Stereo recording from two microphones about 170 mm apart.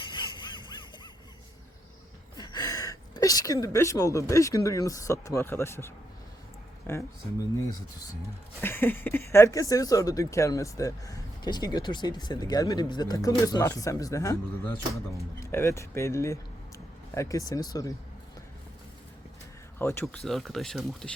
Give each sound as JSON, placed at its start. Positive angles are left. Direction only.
{"t": 0.0, "sound": "music", "side_deg": 25}
{"t": 2.4, "sound": "speech", "side_deg": 25}
{"t": 8.6, "sound": "speech", "side_deg": 10}
{"t": 19.8, "sound": "speech", "side_deg": 15}